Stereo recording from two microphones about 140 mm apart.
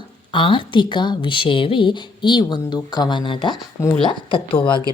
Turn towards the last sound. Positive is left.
turn(degrees=40)  # may be behind; listen again after turning